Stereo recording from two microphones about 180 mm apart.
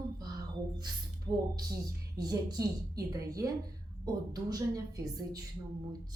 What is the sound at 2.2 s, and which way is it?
A woman's voice, 20° right (ahead or behind).